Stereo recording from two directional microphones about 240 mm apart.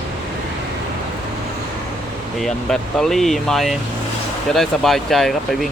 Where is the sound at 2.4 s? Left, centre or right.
Centre.